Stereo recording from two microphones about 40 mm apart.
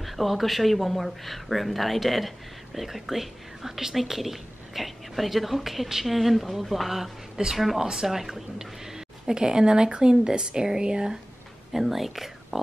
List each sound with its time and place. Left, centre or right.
0.0 s speech: centre
7.8 s a woman's voice: centre
11.7 s speech: centre